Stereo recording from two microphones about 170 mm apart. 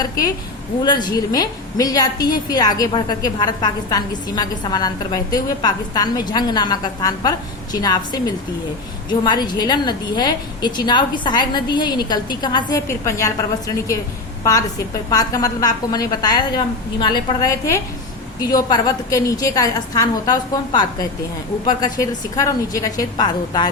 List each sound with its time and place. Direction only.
0.0 s a woman's voice: 20° left (ahead or behind)
15.1 s a woman's voice: 20° left (ahead or behind)